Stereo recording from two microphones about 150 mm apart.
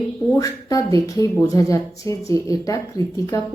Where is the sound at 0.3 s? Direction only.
20° left (ahead or behind).